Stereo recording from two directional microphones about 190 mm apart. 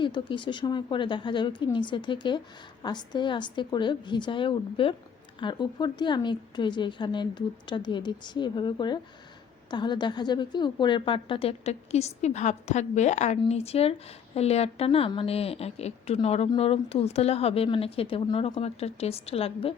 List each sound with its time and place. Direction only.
0.0 s a woman's voice: 25° left (ahead or behind)